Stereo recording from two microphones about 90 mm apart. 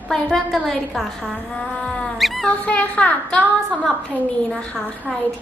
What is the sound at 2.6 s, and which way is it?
Speech, 15° left (ahead or behind).